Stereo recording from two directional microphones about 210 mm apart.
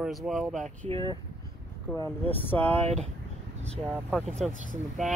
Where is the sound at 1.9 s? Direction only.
10° left (ahead or behind).